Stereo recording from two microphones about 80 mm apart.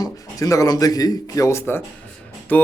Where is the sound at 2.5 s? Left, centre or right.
Centre.